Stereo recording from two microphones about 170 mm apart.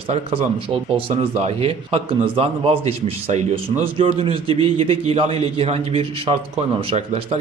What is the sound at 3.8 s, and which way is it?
A man's voice, 30° right (ahead or behind).